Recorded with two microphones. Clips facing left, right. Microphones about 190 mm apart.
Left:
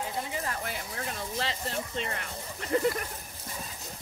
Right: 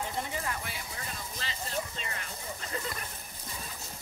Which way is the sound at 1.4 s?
65° left (ahead or behind).